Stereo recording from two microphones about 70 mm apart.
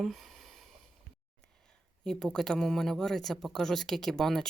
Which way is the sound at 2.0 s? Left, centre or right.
Centre.